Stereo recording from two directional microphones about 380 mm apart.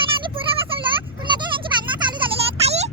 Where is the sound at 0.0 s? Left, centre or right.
Centre.